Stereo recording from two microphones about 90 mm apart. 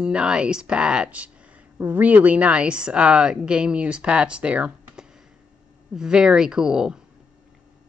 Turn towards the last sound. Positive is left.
turn(degrees=-10)  # may be behind; listen again after turning